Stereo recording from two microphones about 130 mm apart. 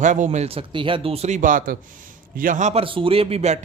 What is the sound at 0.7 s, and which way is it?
A man's voice, 40° right (ahead or behind).